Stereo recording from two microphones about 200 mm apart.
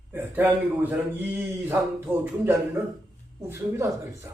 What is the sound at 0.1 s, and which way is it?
Speech, 10° right (ahead or behind).